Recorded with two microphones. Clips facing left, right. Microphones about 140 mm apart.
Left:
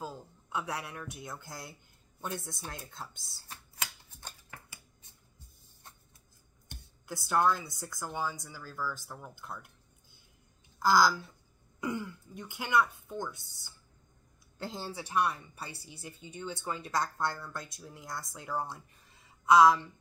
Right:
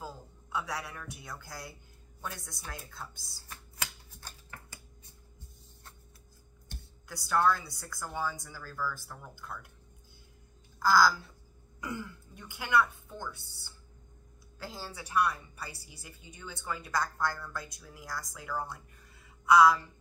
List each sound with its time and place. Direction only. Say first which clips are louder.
0.0 s a woman's voice: left 2 dB; 20° left (ahead or behind)
6.7 s speech: left 4 dB; 20° left (ahead or behind)
10.8 s a woman's voice: even; 20° left (ahead or behind)
14.6 s a woman's voice: left 3 dB; 25° left (ahead or behind)